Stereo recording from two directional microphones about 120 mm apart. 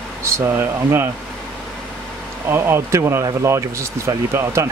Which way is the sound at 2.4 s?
20° right (ahead or behind).